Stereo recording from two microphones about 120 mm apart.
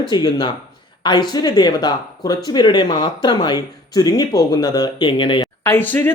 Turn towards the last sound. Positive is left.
turn(degrees=15)  # may be behind; listen again after turning